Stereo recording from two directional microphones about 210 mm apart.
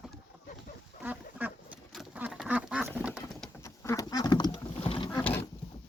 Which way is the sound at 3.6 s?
15° left (ahead or behind).